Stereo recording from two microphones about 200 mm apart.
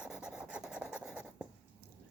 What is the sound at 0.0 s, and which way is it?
Rub, 5° right (ahead or behind).